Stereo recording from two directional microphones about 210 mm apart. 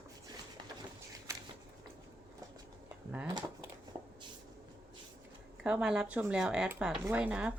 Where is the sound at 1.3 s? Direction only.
15° right (ahead or behind).